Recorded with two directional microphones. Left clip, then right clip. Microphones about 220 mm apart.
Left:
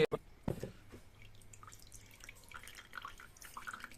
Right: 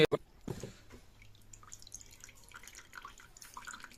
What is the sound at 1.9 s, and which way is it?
Drip, 10° left (ahead or behind).